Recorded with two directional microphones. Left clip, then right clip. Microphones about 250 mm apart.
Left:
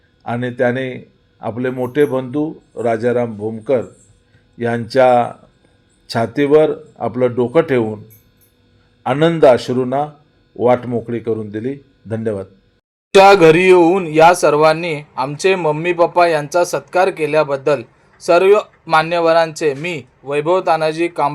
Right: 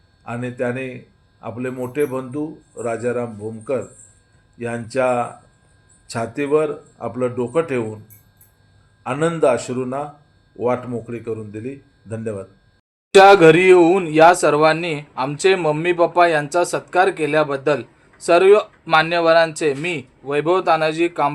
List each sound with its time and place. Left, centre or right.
0.3 s speech: centre
9.0 s speech: left
13.1 s speech: centre